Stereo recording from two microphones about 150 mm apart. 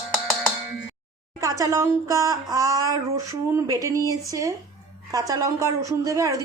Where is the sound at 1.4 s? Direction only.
20° right (ahead or behind).